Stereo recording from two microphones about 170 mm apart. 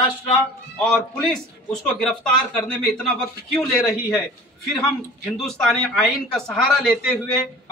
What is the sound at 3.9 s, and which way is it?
Speech, 15° left (ahead or behind).